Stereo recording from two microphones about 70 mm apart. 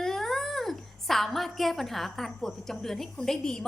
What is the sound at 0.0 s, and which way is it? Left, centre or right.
Speech, centre.